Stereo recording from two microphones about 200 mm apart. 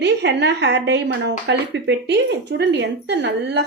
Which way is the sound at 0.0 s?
60° right (ahead or behind).